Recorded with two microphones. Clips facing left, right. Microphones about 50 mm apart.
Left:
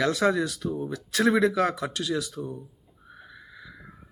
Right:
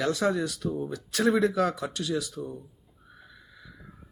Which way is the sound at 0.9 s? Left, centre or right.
Left.